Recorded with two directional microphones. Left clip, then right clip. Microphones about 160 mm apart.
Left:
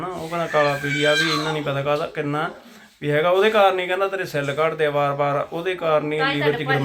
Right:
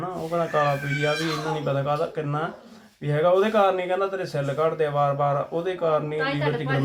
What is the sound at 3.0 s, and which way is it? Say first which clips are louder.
Speech: left 3 dB; 15° left (ahead or behind).